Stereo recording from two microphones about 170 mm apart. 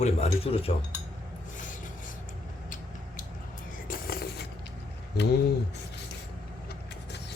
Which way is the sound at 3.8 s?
60° left (ahead or behind).